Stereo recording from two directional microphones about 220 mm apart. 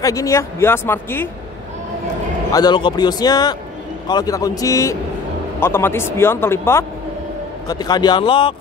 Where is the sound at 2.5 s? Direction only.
20° left (ahead or behind).